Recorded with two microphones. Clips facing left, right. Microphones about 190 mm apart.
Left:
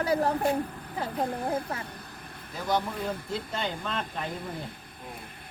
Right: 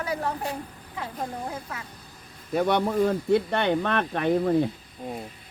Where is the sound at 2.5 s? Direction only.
65° right (ahead or behind).